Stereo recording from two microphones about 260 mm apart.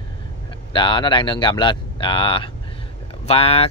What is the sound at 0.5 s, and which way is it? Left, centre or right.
Speech, centre.